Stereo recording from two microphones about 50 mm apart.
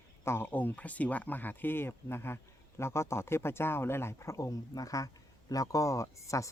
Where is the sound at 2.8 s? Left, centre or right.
Left.